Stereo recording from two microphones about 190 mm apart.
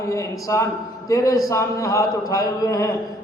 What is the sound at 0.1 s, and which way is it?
A man's voice, 15° left (ahead or behind).